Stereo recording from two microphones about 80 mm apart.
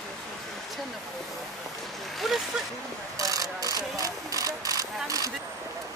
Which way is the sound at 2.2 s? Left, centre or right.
Centre.